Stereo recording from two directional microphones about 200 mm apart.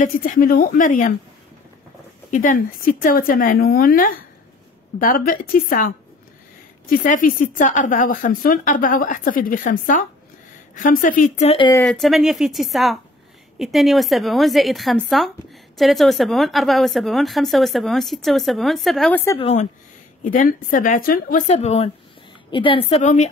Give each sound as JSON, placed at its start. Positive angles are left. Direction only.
{"t": 0.0, "sound": "a woman's voice", "side_deg": 40}
{"t": 2.3, "sound": "a woman's voice", "side_deg": 40}
{"t": 7.0, "sound": "a woman's voice", "side_deg": 40}
{"t": 11.8, "sound": "speech", "side_deg": 0}
{"t": 19.3, "sound": "speech", "side_deg": 30}
{"t": 20.2, "sound": "a woman's voice", "side_deg": 40}